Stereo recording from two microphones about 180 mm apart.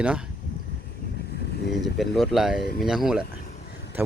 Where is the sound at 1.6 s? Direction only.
70° left (ahead or behind).